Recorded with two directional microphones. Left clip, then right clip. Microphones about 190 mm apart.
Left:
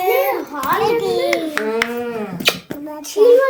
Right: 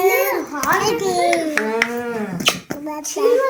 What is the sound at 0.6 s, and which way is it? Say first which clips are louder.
Children playing: left 1 dB; centre (ahead or behind).